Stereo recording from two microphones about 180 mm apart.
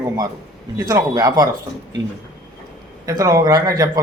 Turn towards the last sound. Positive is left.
turn(degrees=-20)  # may be behind; listen again after turning